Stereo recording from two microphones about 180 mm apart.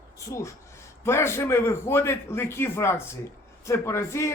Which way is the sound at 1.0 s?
15° left (ahead or behind).